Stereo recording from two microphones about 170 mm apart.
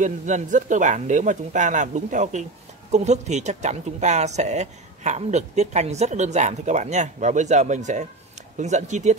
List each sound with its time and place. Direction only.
0.0 s speech: 45° right (ahead or behind)